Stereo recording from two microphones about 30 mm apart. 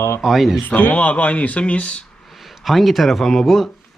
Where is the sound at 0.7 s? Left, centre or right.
Left.